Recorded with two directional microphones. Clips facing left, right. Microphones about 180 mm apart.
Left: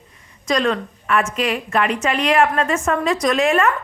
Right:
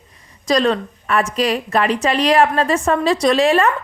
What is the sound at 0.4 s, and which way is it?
A woman's voice, 35° right (ahead or behind).